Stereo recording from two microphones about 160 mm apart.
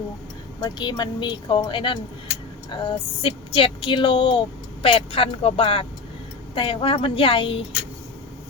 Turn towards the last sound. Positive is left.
turn(degrees=35)  # may be behind; listen again after turning